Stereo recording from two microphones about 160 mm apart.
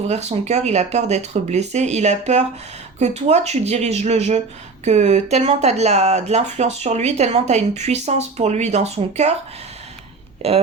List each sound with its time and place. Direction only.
0.1 s speech: 45° right (ahead or behind)
10.4 s speech: 40° right (ahead or behind)